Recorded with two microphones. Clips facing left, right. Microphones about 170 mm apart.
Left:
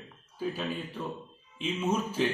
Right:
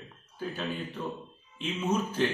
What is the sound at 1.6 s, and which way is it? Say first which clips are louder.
Speech: even; 5° left (ahead or behind).